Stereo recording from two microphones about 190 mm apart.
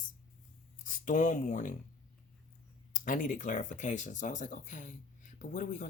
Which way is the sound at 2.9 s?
45° left (ahead or behind).